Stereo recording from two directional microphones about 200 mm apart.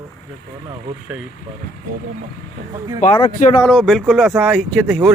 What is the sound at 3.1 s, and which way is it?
Speech, 25° left (ahead or behind).